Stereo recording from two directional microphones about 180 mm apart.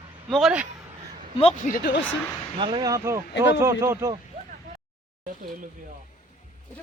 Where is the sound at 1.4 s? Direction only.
40° left (ahead or behind).